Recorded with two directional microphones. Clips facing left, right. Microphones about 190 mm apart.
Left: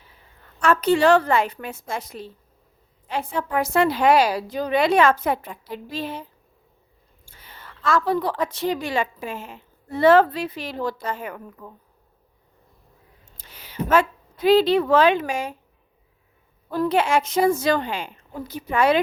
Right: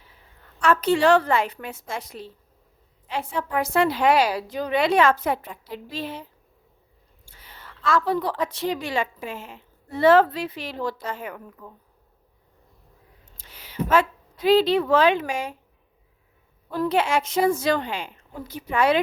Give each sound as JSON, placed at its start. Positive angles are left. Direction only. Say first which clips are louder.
{"t": 0.6, "sound": "a woman's voice", "louder": "left 1 dB", "side_deg": 45}
{"t": 7.3, "sound": "a woman's voice", "louder": "left 1 dB", "side_deg": 50}
{"t": 13.3, "sound": "speech", "louder": "right 1 dB", "side_deg": 50}
{"t": 16.7, "sound": "a woman's voice", "louder": "left 2 dB", "side_deg": 50}